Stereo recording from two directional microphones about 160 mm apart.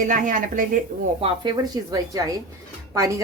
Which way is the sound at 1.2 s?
30° right (ahead or behind).